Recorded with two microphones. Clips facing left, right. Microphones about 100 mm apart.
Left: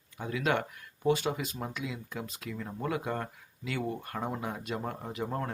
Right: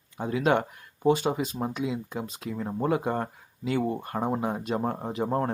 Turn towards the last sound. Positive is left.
turn(degrees=-35)  # may be behind; listen again after turning